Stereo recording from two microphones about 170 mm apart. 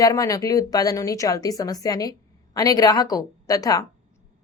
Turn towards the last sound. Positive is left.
turn(degrees=20)  # may be behind; listen again after turning